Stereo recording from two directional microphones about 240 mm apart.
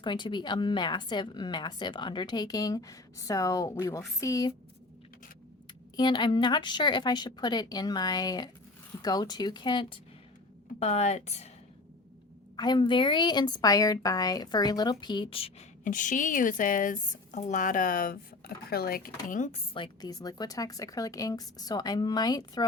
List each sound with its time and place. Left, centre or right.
0.0 s a woman's voice: centre
6.0 s a woman's voice: centre
12.5 s a woman's voice: centre
19.7 s a woman's voice: centre